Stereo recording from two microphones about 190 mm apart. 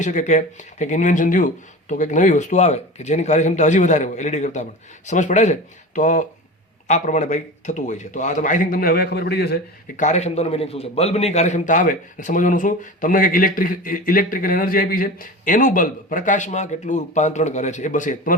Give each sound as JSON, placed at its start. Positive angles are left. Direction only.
{"t": 0.0, "sound": "speech", "side_deg": 40}
{"t": 10.0, "sound": "a man's voice", "side_deg": 35}